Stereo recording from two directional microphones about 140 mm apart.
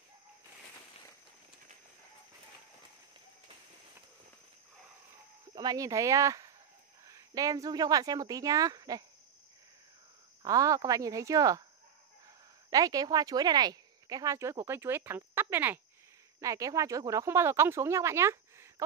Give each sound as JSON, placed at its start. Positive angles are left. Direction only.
{"t": 5.6, "sound": "a woman's voice", "side_deg": -25}
{"t": 10.4, "sound": "a woman's voice", "side_deg": -25}
{"t": 12.6, "sound": "a woman's voice", "side_deg": -25}